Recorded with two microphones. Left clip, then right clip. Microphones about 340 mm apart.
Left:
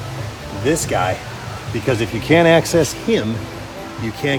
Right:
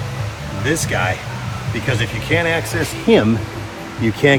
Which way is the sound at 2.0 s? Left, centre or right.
Left.